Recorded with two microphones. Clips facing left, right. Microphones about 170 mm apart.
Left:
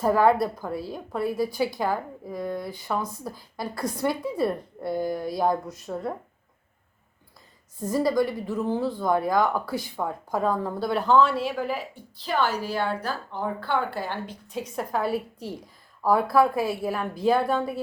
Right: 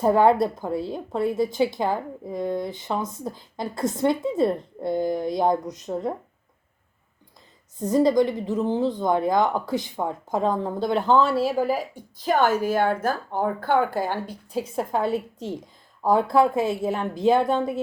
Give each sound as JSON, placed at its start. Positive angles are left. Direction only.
{"t": 0.0, "sound": "a woman's voice", "side_deg": -25}
{"t": 7.8, "sound": "a woman's voice", "side_deg": -20}
{"t": 14.5, "sound": "a woman's voice", "side_deg": -30}